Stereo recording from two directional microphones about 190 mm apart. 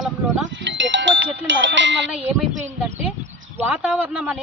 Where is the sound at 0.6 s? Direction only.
75° right (ahead or behind).